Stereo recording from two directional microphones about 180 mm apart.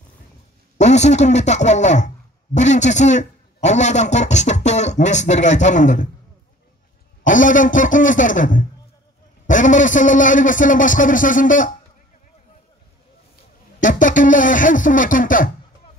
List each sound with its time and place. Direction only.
0.7 s a man's voice: 40° left (ahead or behind)
7.2 s a man's voice: 45° left (ahead or behind)
13.7 s a man's voice: 45° left (ahead or behind)